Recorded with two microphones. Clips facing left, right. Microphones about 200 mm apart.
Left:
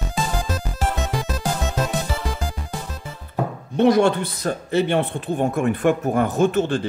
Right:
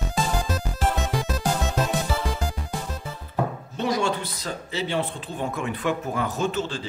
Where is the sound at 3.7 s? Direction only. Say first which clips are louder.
Left 10 dB; 60° left (ahead or behind).